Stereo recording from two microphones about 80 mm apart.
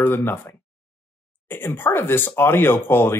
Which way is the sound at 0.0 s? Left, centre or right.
Left.